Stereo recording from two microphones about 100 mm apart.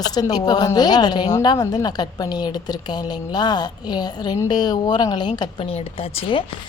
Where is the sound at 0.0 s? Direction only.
40° left (ahead or behind).